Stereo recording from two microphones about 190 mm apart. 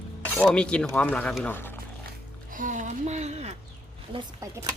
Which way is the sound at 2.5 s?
45° right (ahead or behind).